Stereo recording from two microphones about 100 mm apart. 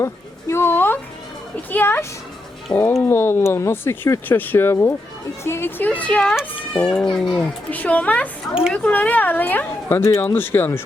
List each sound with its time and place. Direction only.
0.0 s a sound: 30° left (ahead or behind)
1.7 s speech: 25° left (ahead or behind); by 7.3 s 5° left (ahead or behind)
7.3 s speech: 15° left (ahead or behind)